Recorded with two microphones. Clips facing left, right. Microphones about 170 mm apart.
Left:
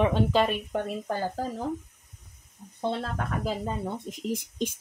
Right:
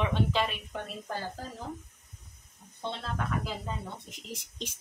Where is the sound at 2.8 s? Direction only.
45° left (ahead or behind).